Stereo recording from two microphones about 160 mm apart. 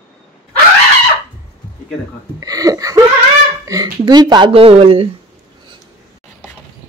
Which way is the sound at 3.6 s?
20° right (ahead or behind).